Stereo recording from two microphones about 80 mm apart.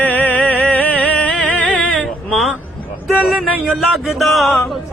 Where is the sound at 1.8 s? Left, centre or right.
Centre.